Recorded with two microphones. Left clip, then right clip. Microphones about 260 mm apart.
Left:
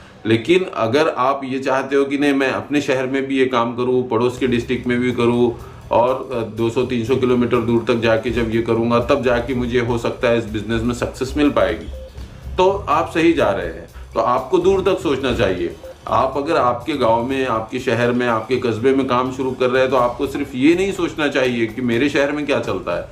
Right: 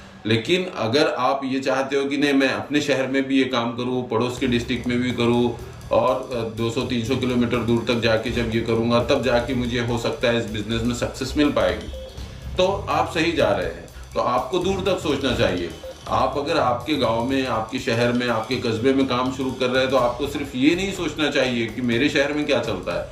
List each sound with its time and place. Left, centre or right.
0.3 s speech: centre